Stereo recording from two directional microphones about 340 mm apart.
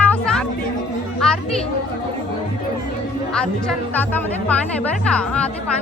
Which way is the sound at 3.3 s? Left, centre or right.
Centre.